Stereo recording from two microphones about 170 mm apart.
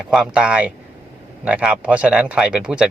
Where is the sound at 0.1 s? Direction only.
5° right (ahead or behind).